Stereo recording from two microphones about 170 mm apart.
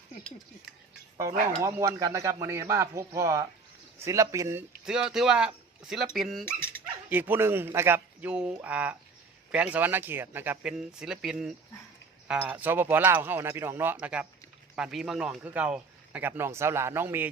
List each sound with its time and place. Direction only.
1.6 s speech: 20° right (ahead or behind)
4.9 s speech: 5° right (ahead or behind)
6.4 s speech: 15° left (ahead or behind)
7.1 s speech: 10° right (ahead or behind)